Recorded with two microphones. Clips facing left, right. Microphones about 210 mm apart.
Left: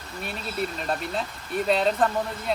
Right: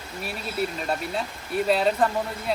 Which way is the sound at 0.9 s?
5° right (ahead or behind).